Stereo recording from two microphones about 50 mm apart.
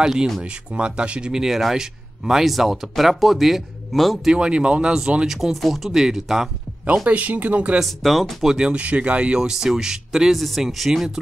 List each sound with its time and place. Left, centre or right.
0.0 s speech: centre
4.3 s speech: centre
7.1 s speech: right
7.8 s speech: centre
8.6 s speech: right; by 11.1 s centre